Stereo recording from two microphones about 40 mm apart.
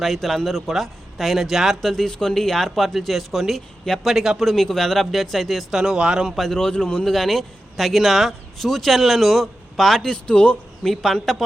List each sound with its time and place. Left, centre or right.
0.0 s speech: centre
1.8 s speech: centre
4.5 s speech: centre
5.7 s speech: centre
6.2 s speech: centre
10.1 s speech: left
10.9 s speech: centre